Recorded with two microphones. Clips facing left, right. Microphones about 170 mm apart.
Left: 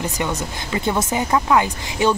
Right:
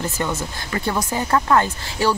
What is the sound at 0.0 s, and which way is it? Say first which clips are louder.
Speech: left 1 dB; 20° left (ahead or behind).